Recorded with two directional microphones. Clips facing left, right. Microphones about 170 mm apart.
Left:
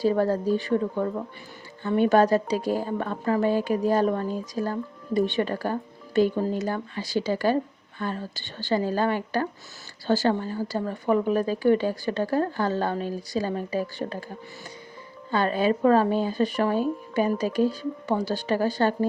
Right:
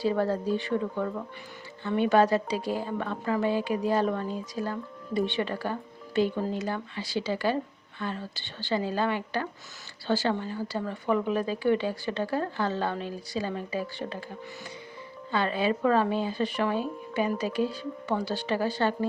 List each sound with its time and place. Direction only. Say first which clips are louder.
0.0 s speech: left 4 dB; 40° left (ahead or behind)
15.3 s speech: left 4 dB; 45° left (ahead or behind)